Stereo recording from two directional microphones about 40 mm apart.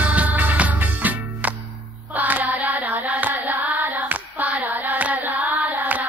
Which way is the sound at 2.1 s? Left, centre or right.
Right.